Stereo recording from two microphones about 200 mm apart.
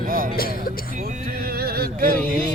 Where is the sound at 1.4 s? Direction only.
50° right (ahead or behind).